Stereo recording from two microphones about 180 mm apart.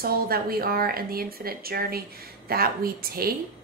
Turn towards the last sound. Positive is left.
turn(degrees=-55)  # may be behind; listen again after turning